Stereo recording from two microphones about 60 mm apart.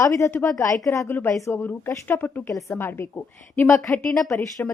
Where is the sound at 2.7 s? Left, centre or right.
Left.